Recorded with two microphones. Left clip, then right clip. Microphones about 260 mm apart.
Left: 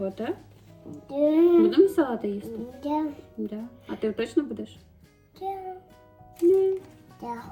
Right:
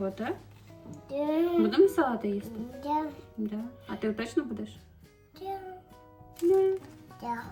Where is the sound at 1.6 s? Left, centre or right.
Centre.